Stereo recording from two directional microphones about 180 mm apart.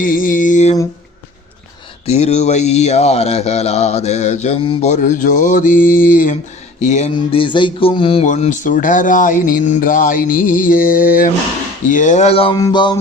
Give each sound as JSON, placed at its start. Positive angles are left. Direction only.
{"t": 0.0, "sound": "speech", "side_deg": 50}
{"t": 2.0, "sound": "speech", "side_deg": 40}
{"t": 8.2, "sound": "speech", "side_deg": 45}
{"t": 12.5, "sound": "a sound", "side_deg": 20}